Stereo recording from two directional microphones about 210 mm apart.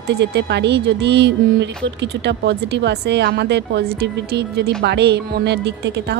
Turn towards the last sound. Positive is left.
turn(degrees=-55)  # may be behind; listen again after turning